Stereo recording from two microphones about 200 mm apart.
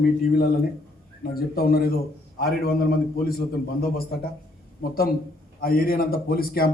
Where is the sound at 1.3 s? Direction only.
50° left (ahead or behind).